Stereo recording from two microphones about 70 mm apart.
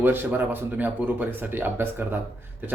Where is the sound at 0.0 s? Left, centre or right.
Right.